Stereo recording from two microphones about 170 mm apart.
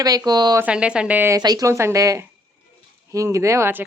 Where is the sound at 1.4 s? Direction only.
20° right (ahead or behind).